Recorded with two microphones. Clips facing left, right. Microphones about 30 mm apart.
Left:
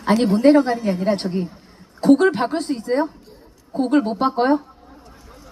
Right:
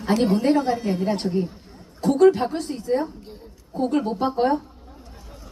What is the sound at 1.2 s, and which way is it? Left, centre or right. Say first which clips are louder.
Speech: even; left.